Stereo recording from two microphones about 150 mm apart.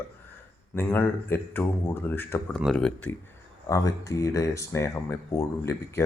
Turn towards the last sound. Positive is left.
turn(degrees=20)  # may be behind; listen again after turning